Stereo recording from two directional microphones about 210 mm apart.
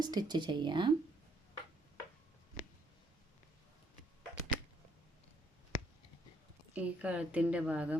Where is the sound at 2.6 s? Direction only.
35° left (ahead or behind).